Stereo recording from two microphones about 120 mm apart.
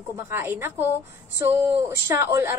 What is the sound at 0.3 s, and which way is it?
A woman's voice, 20° right (ahead or behind).